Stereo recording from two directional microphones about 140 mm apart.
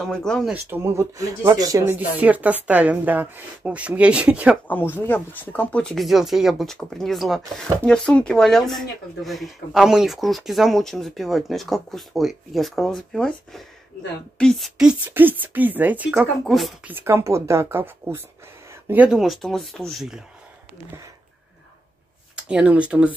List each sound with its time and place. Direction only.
0.0 s speech: 5° left (ahead or behind)
0.5 s speech: 15° right (ahead or behind)
2.0 s speech: 10° right (ahead or behind)
4.6 s speech: 15° left (ahead or behind); by 15.0 s centre (ahead or behind)
15.0 s speech: 15° right (ahead or behind)
16.8 s speech: 15° right (ahead or behind)
18.7 s a sound: 15° right (ahead or behind)
19.0 s speech: centre (ahead or behind)
22.3 s speech: 5° right (ahead or behind)